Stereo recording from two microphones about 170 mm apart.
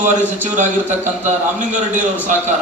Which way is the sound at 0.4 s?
45° right (ahead or behind).